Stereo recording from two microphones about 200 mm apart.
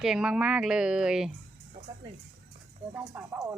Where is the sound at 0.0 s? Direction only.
5° right (ahead or behind).